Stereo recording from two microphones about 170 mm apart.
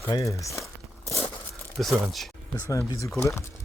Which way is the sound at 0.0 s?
20° left (ahead or behind).